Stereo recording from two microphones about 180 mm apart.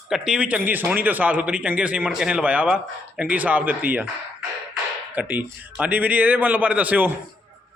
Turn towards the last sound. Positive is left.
turn(degrees=-10)  # may be behind; listen again after turning